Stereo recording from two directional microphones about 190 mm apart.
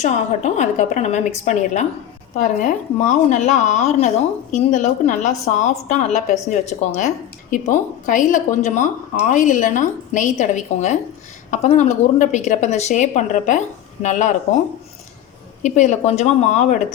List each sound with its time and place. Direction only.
0.0 s speech: 40° left (ahead or behind)
15.6 s speech: 40° left (ahead or behind)